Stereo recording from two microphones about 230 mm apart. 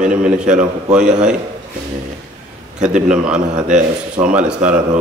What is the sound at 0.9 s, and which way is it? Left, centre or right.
Speech, centre.